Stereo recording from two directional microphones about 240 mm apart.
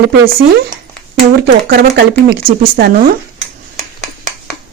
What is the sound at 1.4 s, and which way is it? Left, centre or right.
Speech, right.